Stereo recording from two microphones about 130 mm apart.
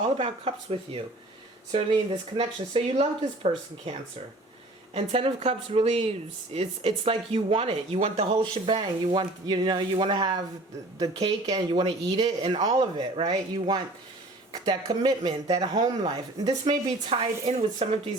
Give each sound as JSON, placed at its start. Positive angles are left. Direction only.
{"t": 0.2, "sound": "speech", "side_deg": -45}
{"t": 2.4, "sound": "speech", "side_deg": -50}
{"t": 4.9, "sound": "speech", "side_deg": -50}
{"t": 17.1, "sound": "speech", "side_deg": -50}